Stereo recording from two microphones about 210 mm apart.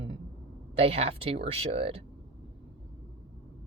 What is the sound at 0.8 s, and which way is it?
Speech, 30° right (ahead or behind).